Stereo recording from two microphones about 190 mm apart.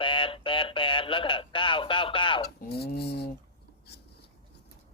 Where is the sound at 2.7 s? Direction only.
55° left (ahead or behind).